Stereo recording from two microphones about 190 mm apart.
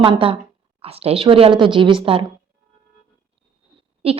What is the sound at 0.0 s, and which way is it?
Speech, 30° right (ahead or behind).